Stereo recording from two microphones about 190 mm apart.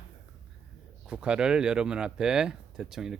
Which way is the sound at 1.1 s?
5° right (ahead or behind).